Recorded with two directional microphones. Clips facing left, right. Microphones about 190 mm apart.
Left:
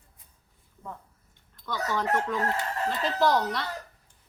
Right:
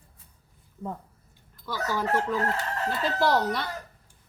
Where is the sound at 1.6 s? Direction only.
5° right (ahead or behind).